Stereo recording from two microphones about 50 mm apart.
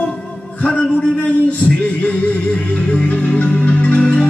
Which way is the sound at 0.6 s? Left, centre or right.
Left.